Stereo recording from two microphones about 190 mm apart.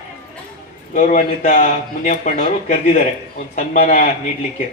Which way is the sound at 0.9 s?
40° left (ahead or behind).